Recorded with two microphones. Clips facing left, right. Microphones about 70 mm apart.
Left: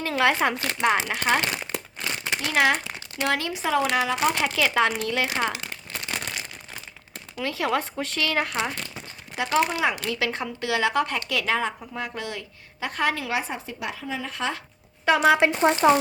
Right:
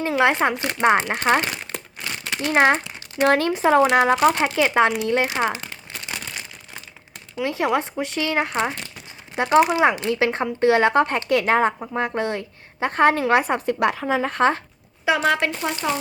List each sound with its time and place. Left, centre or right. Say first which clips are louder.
0.1 s speech: right 3 dB; right
2.5 s speech: right 5 dB; right
4.4 s speech: right 4 dB; right
7.3 s speech: right 4 dB; right
13.4 s speech: right 11 dB; right
15.0 s speech: left 1 dB; centre
15.4 s speech: left 5 dB; left